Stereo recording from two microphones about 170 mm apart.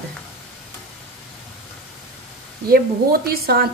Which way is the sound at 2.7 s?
60° right (ahead or behind).